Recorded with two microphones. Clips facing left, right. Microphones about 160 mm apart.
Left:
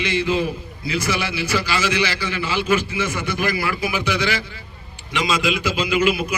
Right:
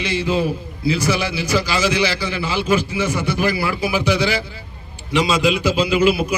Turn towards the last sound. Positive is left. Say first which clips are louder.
# right 3 dB
turn(degrees=-35)  # may be behind; listen again after turning